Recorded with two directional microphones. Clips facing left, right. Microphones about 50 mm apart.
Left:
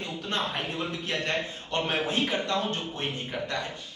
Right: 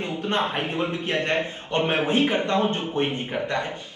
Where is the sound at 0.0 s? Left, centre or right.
Right.